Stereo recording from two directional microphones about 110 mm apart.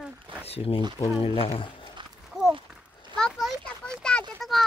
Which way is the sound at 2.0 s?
45° right (ahead or behind).